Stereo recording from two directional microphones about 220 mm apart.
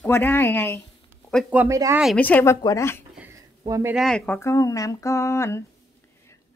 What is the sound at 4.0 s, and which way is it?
A woman's voice, 5° left (ahead or behind).